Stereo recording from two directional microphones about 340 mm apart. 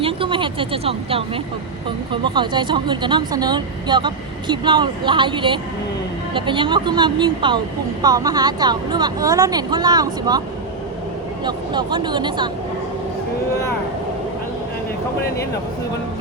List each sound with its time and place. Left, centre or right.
0.0 s speech: centre
2.3 s speech: centre
11.4 s speech: centre